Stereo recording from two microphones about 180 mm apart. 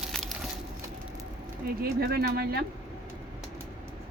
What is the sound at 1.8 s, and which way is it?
Speech, 60° right (ahead or behind).